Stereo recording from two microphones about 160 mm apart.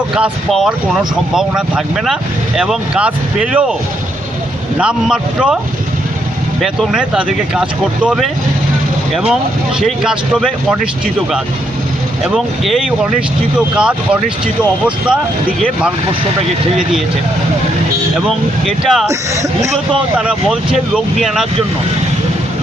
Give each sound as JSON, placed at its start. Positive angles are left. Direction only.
{"t": 0.1, "sound": "speech", "side_deg": -5}
{"t": 4.8, "sound": "speech", "side_deg": -5}
{"t": 6.6, "sound": "speech", "side_deg": -5}
{"t": 12.2, "sound": "speech", "side_deg": 0}
{"t": 18.3, "sound": "speech", "side_deg": 0}
{"t": 19.0, "sound": "speech", "side_deg": -20}
{"t": 20.1, "sound": "speech", "side_deg": -5}